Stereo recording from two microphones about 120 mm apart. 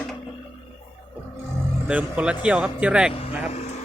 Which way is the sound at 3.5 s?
60° left (ahead or behind).